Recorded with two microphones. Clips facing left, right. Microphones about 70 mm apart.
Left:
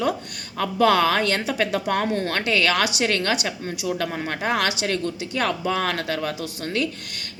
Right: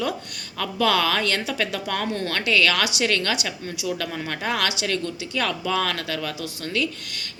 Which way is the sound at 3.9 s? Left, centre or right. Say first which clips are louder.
Left 3 dB; left.